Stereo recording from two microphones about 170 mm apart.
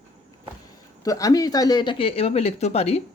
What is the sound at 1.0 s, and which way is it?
Speech, 20° left (ahead or behind).